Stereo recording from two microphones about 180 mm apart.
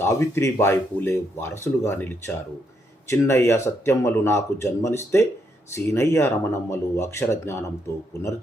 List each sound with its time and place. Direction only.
0.0 s speech: 15° left (ahead or behind)